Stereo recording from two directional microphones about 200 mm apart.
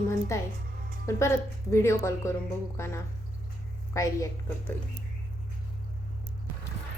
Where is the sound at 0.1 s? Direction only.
15° left (ahead or behind).